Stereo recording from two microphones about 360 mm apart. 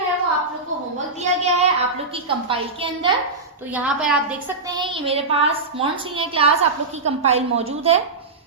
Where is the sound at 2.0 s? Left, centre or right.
Centre.